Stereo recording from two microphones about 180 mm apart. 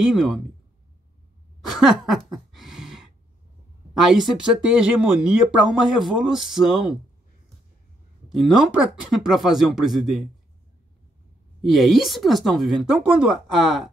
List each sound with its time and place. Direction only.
0.0 s speech: centre (ahead or behind)
1.7 s a sound: centre (ahead or behind)
4.0 s speech: centre (ahead or behind)
8.3 s speech: centre (ahead or behind)
11.6 s speech: centre (ahead or behind)